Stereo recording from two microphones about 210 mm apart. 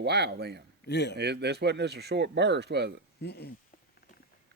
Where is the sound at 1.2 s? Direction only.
55° right (ahead or behind).